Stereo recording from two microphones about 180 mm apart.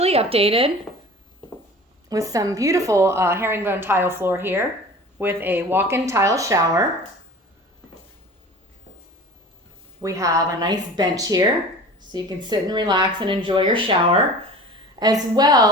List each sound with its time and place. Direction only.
0.0 s speech: 35° right (ahead or behind)
2.0 s a woman's voice: 20° right (ahead or behind)
10.0 s a woman's voice: 15° right (ahead or behind)